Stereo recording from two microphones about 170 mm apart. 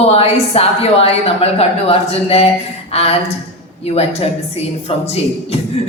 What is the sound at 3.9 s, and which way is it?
Speech, 35° left (ahead or behind).